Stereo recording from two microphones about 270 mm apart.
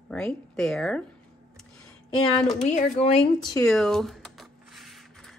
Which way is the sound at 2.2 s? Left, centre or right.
Centre.